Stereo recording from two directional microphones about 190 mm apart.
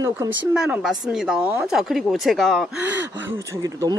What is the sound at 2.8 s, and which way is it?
Speech, 10° right (ahead or behind).